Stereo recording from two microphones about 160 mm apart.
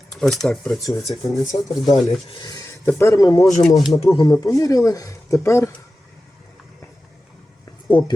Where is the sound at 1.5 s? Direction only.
30° left (ahead or behind).